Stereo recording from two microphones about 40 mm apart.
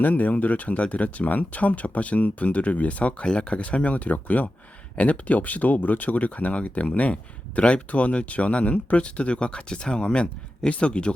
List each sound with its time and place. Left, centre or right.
0.0 s speech: left